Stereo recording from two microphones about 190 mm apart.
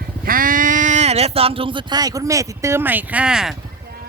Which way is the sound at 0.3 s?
45° right (ahead or behind).